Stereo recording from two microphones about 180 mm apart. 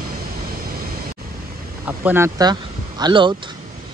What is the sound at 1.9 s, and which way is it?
Speech, 10° right (ahead or behind).